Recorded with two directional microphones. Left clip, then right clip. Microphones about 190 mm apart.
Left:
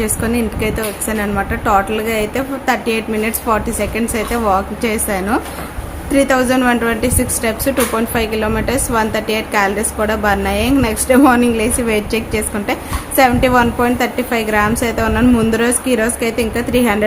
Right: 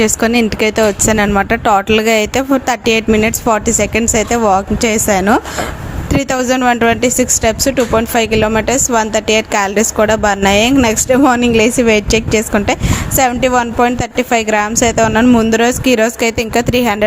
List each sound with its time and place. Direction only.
0.0 s speech: 50° right (ahead or behind)